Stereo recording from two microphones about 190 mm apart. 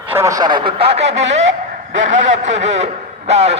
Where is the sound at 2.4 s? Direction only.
35° right (ahead or behind).